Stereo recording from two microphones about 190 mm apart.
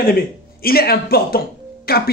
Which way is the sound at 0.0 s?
50° left (ahead or behind).